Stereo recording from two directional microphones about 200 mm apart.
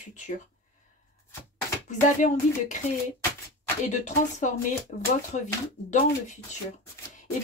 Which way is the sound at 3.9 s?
35° left (ahead or behind).